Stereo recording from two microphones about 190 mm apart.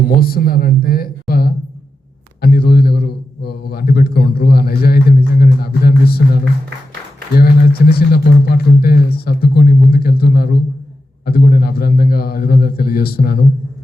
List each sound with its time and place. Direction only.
0.1 s a man's voice: 50° left (ahead or behind)